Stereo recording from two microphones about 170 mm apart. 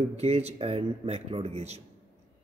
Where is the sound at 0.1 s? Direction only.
35° right (ahead or behind).